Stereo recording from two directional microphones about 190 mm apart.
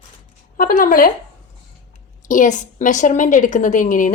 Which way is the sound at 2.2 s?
40° left (ahead or behind).